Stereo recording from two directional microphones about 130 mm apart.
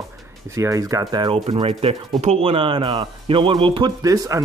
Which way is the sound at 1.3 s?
45° right (ahead or behind).